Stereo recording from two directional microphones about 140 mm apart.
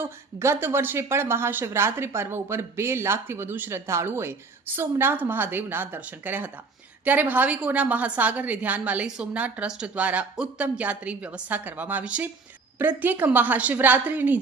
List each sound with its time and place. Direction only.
0.0 s speech: 20° right (ahead or behind)